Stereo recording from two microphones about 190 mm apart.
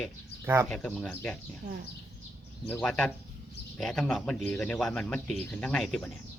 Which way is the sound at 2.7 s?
5° left (ahead or behind).